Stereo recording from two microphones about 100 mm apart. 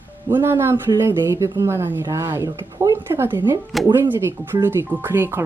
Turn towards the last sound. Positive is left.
turn(degrees=-20)  # may be behind; listen again after turning